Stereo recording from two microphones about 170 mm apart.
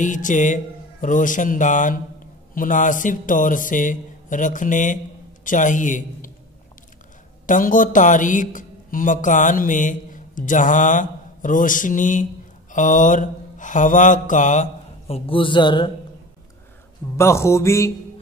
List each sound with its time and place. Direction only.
0.0 s a man's voice: 50° left (ahead or behind)
7.4 s speech: 50° left (ahead or behind)
12.7 s mantra: 50° left (ahead or behind); by 15.9 s 30° left (ahead or behind)
17.2 s a sound: 15° left (ahead or behind)